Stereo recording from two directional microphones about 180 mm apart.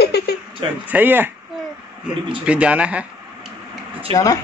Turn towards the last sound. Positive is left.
turn(degrees=20)  # may be behind; listen again after turning